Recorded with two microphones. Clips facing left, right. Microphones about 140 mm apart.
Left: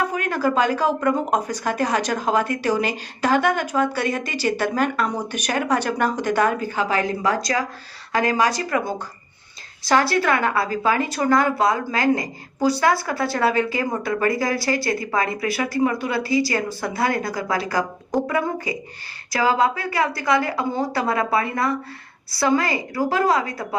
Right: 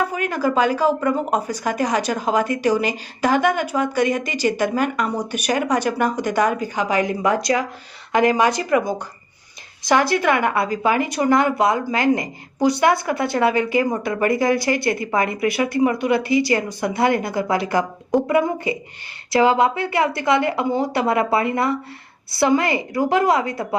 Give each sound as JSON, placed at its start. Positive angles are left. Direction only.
{"t": 0.1, "sound": "a woman's voice", "side_deg": -10}
{"t": 9.8, "sound": "a woman's voice", "side_deg": -15}